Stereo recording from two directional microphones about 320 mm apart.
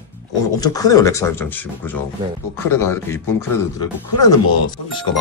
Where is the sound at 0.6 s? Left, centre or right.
Centre.